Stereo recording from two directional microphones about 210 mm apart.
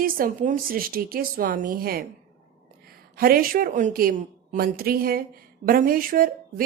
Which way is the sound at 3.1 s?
45° right (ahead or behind).